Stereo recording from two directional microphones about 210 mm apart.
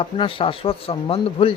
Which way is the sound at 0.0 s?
25° left (ahead or behind).